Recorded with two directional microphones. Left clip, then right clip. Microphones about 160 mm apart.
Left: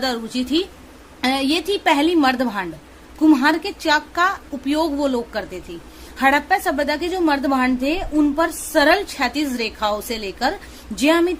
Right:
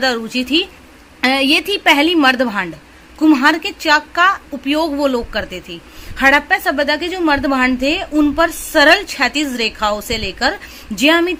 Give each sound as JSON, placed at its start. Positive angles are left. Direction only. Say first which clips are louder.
{"t": 0.0, "sound": "a woman's voice", "louder": "right 6 dB", "side_deg": -15}